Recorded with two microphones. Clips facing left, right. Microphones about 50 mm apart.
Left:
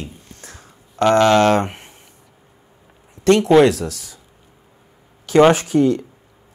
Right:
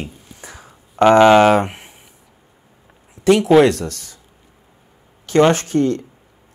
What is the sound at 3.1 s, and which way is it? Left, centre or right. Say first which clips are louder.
Speech: even; centre.